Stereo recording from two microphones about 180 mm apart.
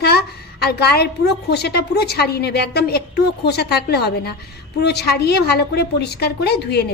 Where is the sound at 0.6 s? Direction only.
65° left (ahead or behind).